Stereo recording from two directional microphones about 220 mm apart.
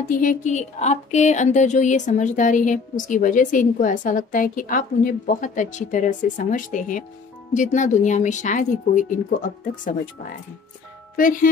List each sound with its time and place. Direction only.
0.1 s a woman's voice: 35° left (ahead or behind)
11.1 s a woman's voice: 35° left (ahead or behind)